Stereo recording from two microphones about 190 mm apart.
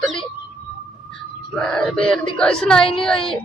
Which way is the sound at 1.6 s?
5° left (ahead or behind).